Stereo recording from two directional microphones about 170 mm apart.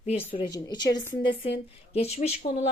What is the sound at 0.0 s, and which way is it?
Speech, 35° left (ahead or behind).